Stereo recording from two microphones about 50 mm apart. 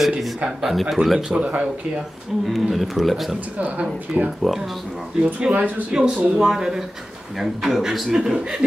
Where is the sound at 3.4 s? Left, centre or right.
Right.